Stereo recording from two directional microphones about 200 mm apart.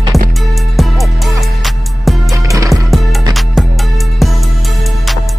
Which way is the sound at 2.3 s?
15° right (ahead or behind).